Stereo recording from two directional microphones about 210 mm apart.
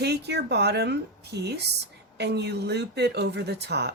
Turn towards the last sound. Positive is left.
turn(degrees=-50)  # may be behind; listen again after turning